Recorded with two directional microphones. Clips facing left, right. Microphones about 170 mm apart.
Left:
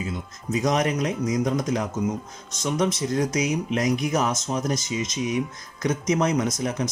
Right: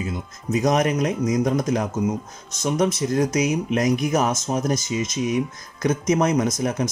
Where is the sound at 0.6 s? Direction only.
45° right (ahead or behind).